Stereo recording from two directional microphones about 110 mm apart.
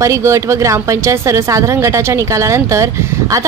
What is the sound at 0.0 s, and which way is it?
A woman's voice, 30° right (ahead or behind).